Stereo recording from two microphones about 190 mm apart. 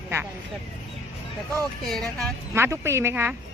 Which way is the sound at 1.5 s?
5° left (ahead or behind).